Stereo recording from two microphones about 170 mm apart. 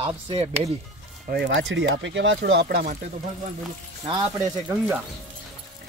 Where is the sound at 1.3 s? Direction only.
85° right; by 3.0 s 60° right (ahead or behind).